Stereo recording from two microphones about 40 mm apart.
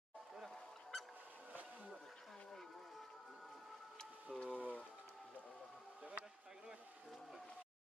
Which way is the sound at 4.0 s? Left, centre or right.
Left.